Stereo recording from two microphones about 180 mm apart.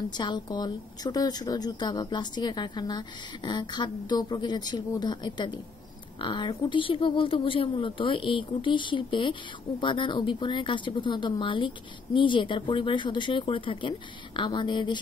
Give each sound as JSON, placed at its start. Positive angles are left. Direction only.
{"t": 0.1, "sound": "speech", "side_deg": 25}